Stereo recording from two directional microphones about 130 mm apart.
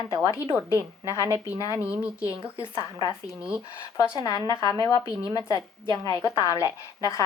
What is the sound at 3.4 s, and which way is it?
Speech, 5° right (ahead or behind).